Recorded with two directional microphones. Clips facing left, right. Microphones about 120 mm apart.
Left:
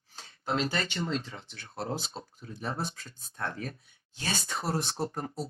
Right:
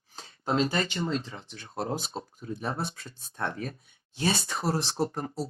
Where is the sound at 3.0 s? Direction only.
25° right (ahead or behind).